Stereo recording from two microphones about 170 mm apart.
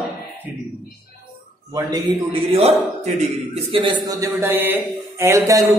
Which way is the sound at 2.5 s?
40° right (ahead or behind).